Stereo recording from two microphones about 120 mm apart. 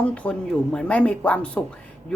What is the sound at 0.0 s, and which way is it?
A woman's voice, 10° left (ahead or behind).